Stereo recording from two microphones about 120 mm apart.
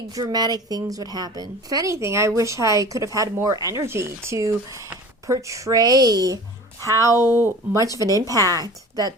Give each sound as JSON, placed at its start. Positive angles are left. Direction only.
{"t": 0.1, "sound": "a woman's voice", "side_deg": -35}